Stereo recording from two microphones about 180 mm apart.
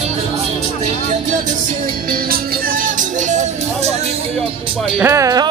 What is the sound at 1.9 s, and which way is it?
Music, 55° right (ahead or behind).